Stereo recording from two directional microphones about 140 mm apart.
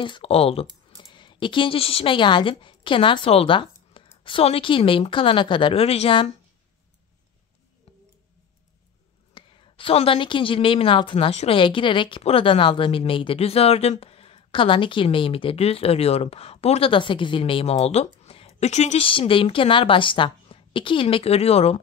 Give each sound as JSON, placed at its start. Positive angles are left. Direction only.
{"t": 0.0, "sound": "speech", "side_deg": 40}
{"t": 9.3, "sound": "a woman's voice", "side_deg": 35}